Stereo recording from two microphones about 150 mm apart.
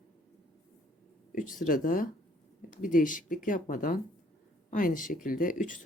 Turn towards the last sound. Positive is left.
turn(degrees=60)  # may be behind; listen again after turning